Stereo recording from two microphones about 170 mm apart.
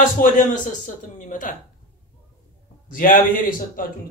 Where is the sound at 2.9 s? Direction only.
55° left (ahead or behind).